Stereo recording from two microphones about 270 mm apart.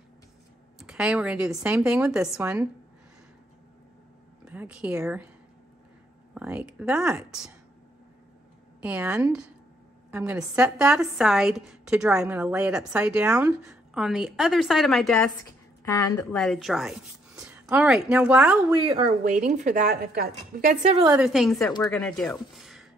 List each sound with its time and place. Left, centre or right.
0.7 s a woman's voice: centre
4.5 s a woman's voice: centre
6.3 s a woman's voice: centre
8.8 s a woman's voice: centre
15.8 s a woman's voice: centre
16.3 s a woman's voice: centre
18.9 s a woman's voice: right
21.2 s a woman's voice: centre